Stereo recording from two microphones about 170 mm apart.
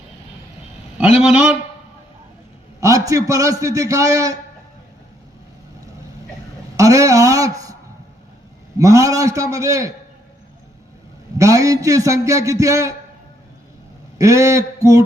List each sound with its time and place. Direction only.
1.2 s a man's voice: 5° right (ahead or behind)
2.8 s a man's voice: 20° right (ahead or behind)
6.7 s a sound: 20° right (ahead or behind)
8.8 s a man's voice: 20° right (ahead or behind)
11.3 s a man's voice: 20° right (ahead or behind)
14.2 s a man's voice: 20° right (ahead or behind)